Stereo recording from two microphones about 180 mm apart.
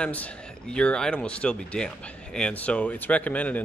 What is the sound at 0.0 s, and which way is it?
Speech, 5° left (ahead or behind).